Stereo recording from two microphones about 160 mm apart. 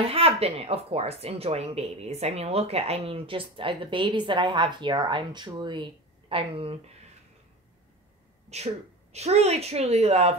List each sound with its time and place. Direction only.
0.0 s speech: 35° right (ahead or behind)
8.5 s speech: 45° right (ahead or behind)